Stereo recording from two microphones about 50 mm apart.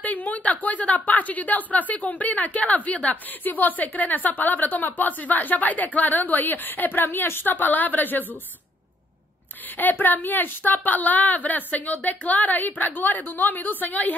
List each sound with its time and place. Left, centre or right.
0.0 s a woman's voice: left
7.5 s a woman's voice: left
9.8 s a woman's voice: left